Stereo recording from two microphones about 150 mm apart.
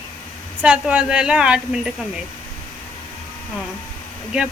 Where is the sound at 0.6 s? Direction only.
10° right (ahead or behind).